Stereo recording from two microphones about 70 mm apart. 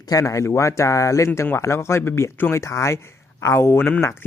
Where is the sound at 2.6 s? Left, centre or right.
Left.